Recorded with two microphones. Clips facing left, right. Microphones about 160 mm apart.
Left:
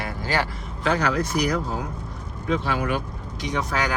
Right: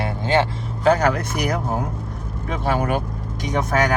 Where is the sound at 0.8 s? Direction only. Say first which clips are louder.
Right 5 dB; 45° right (ahead or behind).